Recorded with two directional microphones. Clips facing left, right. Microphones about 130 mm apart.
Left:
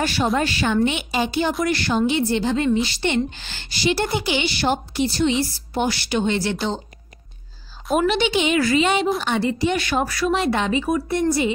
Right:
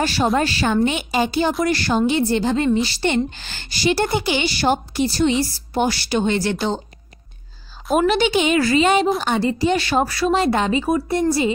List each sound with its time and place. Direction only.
0.0 s a woman's voice: 30° right (ahead or behind)
6.2 s a woman's voice: 50° right (ahead or behind)
8.0 s a woman's voice: 45° right (ahead or behind)
8.5 s a woman's voice: 35° right (ahead or behind)